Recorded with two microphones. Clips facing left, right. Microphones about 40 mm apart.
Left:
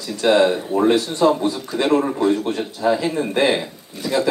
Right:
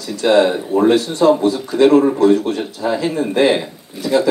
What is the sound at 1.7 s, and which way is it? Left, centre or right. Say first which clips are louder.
Speech: right 10 dB; centre.